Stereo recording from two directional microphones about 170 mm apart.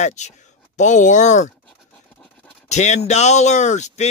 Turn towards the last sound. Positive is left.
turn(degrees=45)  # may be behind; listen again after turning